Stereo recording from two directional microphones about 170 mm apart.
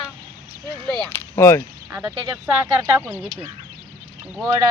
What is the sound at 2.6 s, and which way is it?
Speech, 15° right (ahead or behind).